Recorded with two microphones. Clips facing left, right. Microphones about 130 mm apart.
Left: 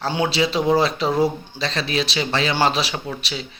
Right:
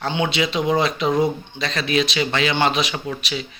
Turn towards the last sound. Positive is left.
turn(degrees=30)  # may be behind; listen again after turning